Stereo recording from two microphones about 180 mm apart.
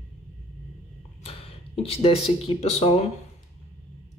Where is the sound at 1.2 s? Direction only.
35° left (ahead or behind).